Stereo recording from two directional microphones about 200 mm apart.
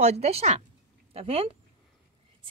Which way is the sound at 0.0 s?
35° right (ahead or behind).